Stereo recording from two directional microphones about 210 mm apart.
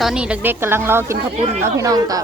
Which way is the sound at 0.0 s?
5° right (ahead or behind).